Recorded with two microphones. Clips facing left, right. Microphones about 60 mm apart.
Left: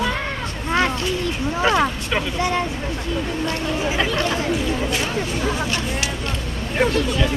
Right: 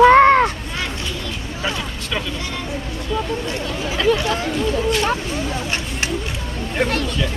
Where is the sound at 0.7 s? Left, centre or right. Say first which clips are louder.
Left 6 dB; left.